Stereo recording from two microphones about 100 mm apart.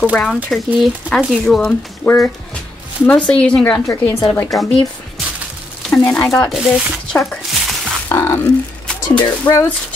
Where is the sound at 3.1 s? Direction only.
10° left (ahead or behind).